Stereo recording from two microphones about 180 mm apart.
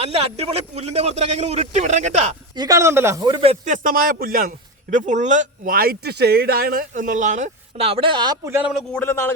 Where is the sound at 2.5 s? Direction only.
20° right (ahead or behind); by 4.5 s 55° right (ahead or behind).